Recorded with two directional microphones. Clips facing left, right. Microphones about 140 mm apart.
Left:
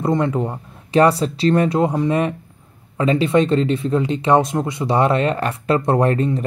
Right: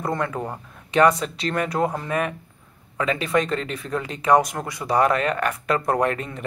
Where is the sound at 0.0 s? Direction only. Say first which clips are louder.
Left 7 dB; 25° left (ahead or behind).